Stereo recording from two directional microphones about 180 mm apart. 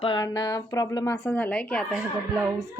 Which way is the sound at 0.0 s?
25° left (ahead or behind).